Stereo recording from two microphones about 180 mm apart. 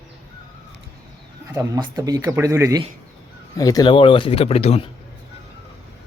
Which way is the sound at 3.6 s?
20° left (ahead or behind).